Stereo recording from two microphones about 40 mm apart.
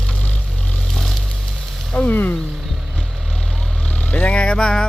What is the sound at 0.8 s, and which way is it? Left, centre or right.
Vehicle, centre.